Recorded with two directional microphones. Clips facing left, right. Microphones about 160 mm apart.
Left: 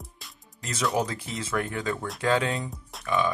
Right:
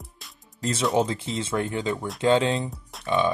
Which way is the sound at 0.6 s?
25° right (ahead or behind).